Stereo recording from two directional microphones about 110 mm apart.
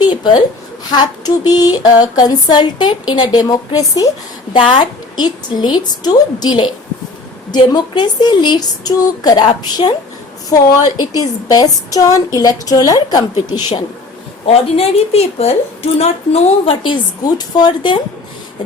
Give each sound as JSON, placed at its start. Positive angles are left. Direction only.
{"t": 0.0, "sound": "a sound", "side_deg": 40}
{"t": 0.9, "sound": "a woman's voice", "side_deg": 35}
{"t": 10.5, "sound": "a woman's voice", "side_deg": 35}
{"t": 14.4, "sound": "a woman's voice", "side_deg": 65}
{"t": 16.8, "sound": "speech", "side_deg": 45}